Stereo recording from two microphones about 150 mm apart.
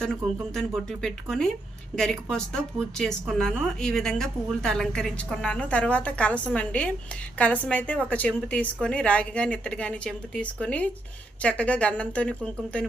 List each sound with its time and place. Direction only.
0.5 s a woman's voice: 5° left (ahead or behind)